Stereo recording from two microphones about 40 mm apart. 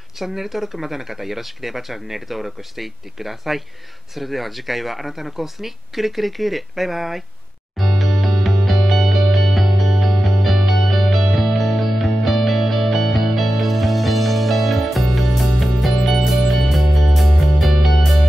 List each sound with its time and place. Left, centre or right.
0.2 s speech: centre
7.7 s music: centre